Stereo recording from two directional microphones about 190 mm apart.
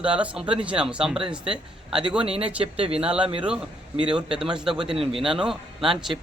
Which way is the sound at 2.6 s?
30° right (ahead or behind).